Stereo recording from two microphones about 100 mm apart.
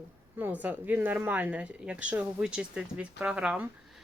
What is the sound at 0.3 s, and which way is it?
Speech, 20° right (ahead or behind).